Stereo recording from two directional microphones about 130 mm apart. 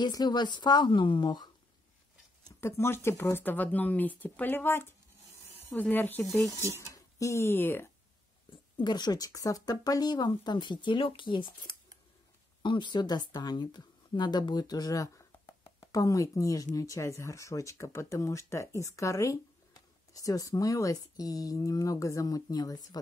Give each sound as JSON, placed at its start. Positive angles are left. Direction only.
{"t": 0.0, "sound": "speech", "side_deg": 30}
{"t": 2.6, "sound": "speech", "side_deg": 20}
{"t": 6.9, "sound": "speech", "side_deg": 25}
{"t": 8.8, "sound": "a woman's voice", "side_deg": 35}